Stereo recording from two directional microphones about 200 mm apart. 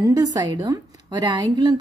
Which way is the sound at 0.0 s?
20° right (ahead or behind).